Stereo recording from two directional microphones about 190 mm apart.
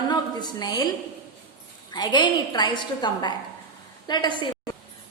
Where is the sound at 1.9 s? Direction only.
20° left (ahead or behind).